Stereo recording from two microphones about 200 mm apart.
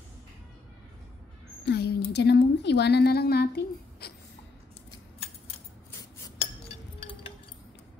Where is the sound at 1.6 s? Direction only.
55° left (ahead or behind).